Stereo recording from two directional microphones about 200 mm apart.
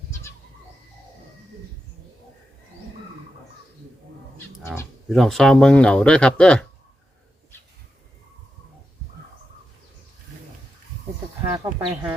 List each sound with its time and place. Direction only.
4.7 s speech: centre (ahead or behind)
11.5 s speech: 20° right (ahead or behind)